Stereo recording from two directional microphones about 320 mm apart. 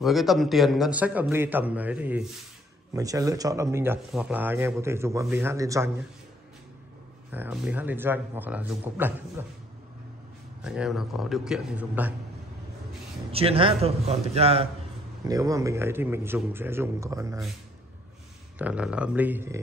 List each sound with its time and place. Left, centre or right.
0.0 s a man's voice: centre
7.2 s a man's voice: centre
10.6 s a man's voice: centre
13.3 s speech: centre
18.6 s a man's voice: centre